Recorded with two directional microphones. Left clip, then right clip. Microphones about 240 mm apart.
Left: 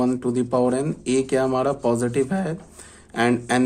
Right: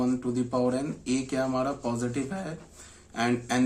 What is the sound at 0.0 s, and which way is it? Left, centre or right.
Speech, left.